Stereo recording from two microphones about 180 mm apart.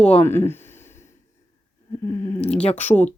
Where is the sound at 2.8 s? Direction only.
10° left (ahead or behind).